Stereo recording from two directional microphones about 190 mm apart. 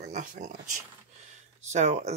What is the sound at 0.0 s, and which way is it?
Speech, 40° right (ahead or behind).